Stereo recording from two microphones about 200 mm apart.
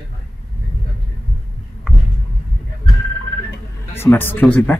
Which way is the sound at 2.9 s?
Centre (ahead or behind).